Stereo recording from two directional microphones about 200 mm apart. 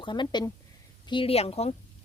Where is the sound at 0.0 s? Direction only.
25° left (ahead or behind).